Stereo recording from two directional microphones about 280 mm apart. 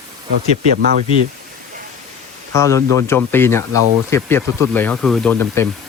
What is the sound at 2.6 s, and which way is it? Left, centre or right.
Speech, centre.